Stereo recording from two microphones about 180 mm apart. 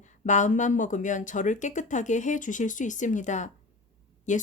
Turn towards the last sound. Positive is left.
turn(degrees=45)  # may be behind; listen again after turning